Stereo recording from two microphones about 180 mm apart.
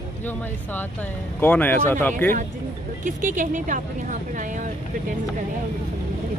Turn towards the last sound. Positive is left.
turn(degrees=-45)  # may be behind; listen again after turning